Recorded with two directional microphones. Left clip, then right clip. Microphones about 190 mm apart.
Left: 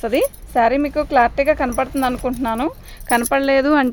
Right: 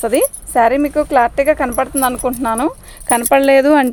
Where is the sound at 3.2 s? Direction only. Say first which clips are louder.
Right 7 dB; 45° right (ahead or behind).